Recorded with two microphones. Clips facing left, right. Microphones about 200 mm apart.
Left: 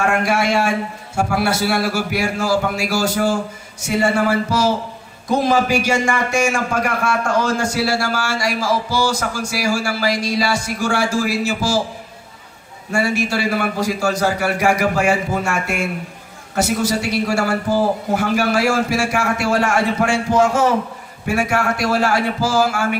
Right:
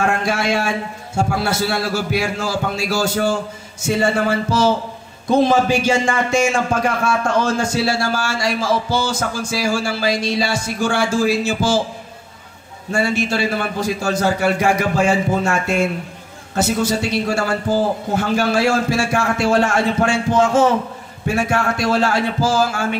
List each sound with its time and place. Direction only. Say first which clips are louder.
0.2 s a man's voice: left 2 dB; 25° right (ahead or behind)
12.9 s a man's voice: even; 25° right (ahead or behind)